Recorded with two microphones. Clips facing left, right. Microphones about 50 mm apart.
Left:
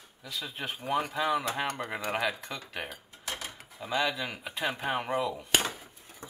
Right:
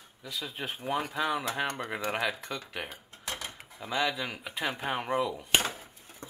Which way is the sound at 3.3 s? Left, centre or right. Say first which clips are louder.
Even; centre.